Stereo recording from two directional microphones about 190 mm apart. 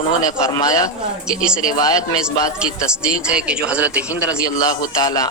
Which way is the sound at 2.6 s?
5° right (ahead or behind).